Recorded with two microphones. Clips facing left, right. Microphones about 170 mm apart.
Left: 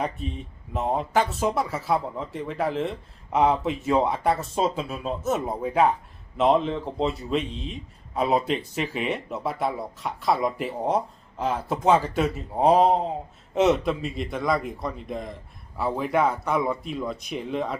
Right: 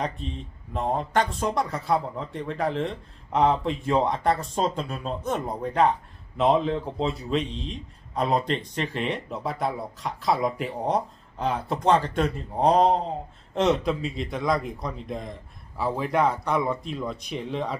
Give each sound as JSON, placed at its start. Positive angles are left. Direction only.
{"t": 0.0, "sound": "speech", "side_deg": 5}